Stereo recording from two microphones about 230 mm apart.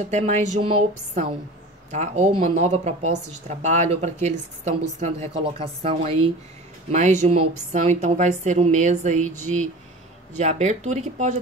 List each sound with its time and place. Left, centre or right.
0.1 s a woman's voice: right